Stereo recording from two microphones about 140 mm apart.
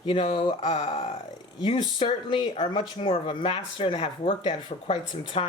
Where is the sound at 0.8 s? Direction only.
50° left (ahead or behind).